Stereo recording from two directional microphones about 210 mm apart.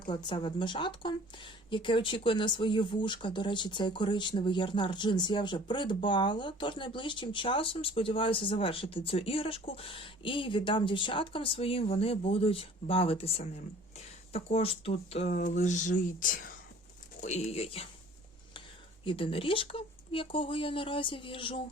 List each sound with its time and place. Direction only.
0.3 s speech: 25° left (ahead or behind)
19.0 s speech: 25° left (ahead or behind)